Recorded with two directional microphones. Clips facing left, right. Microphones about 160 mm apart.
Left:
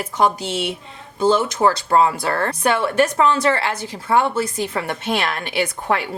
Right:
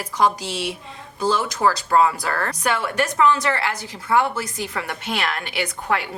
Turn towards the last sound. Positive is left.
turn(degrees=30)  # may be behind; listen again after turning